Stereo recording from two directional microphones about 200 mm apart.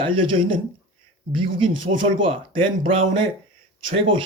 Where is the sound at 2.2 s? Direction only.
25° right (ahead or behind).